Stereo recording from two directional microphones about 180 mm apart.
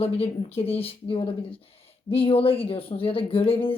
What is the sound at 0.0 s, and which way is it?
Speech, 35° left (ahead or behind).